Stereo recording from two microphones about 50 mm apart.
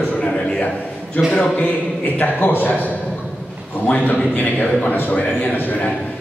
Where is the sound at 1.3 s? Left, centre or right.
Left.